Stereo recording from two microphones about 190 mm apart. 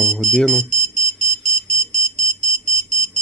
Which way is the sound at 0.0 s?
Centre (ahead or behind).